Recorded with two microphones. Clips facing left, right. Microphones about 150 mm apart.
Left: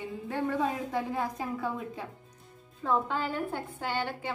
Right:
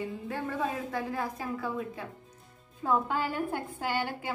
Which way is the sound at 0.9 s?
20° left (ahead or behind).